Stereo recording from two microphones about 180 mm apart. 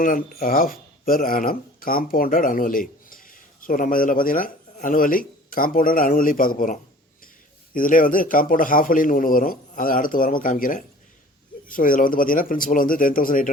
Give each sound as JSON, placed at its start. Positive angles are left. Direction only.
{"t": 0.0, "sound": "a man's voice", "side_deg": 50}